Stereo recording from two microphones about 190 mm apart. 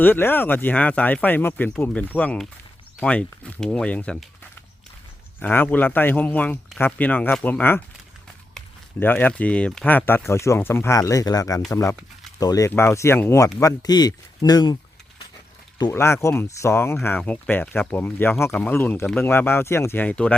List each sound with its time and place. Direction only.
0.0 s speech: 10° left (ahead or behind)
5.4 s speech: 10° left (ahead or behind)
15.8 s speech: 15° left (ahead or behind)